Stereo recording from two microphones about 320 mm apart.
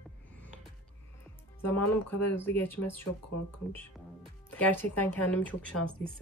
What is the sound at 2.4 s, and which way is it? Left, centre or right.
Speech, centre.